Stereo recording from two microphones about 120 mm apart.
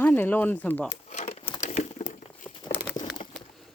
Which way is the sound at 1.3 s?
55° left (ahead or behind).